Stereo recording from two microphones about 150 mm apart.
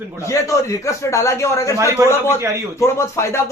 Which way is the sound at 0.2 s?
20° left (ahead or behind).